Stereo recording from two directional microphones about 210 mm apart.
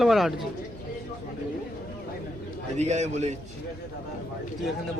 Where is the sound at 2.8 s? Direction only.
35° right (ahead or behind).